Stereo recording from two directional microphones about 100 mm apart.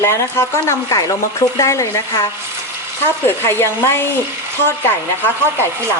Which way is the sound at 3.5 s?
25° left (ahead or behind).